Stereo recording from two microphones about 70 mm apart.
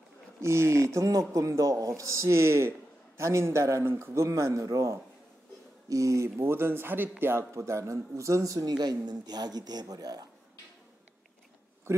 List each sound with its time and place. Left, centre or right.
0.4 s speech: right
0.9 s speech: right
7.5 s speech: right